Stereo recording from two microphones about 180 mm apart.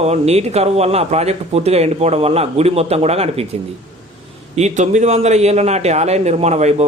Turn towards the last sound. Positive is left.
turn(degrees=-40)  # may be behind; listen again after turning